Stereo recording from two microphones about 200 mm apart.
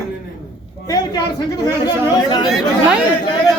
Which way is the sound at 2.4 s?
Centre (ahead or behind).